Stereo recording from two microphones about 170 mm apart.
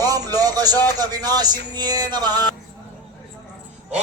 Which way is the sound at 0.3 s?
20° right (ahead or behind).